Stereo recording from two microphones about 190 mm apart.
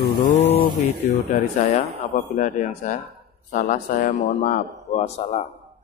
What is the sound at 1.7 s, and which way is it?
A man's voice, 35° left (ahead or behind).